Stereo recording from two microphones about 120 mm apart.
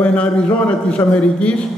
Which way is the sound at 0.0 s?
10° left (ahead or behind).